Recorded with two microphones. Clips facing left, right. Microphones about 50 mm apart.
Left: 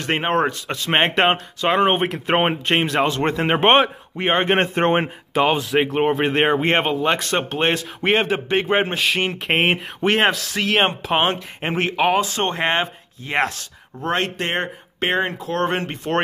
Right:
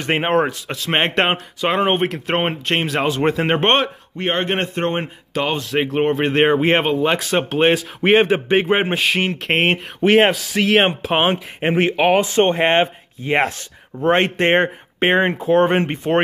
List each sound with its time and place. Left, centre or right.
0.0 s speech: centre
4.6 s a man's voice: left
5.3 s speech: centre
5.6 s speech: centre
12.2 s speech: right
15.5 s speech: centre